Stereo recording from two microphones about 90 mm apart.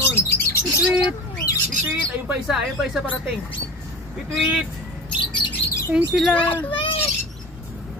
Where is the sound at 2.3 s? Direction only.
10° right (ahead or behind).